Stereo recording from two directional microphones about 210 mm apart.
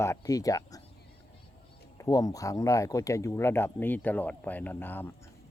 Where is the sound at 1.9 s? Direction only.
15° left (ahead or behind).